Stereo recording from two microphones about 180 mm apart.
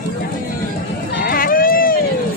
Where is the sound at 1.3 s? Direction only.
50° left (ahead or behind).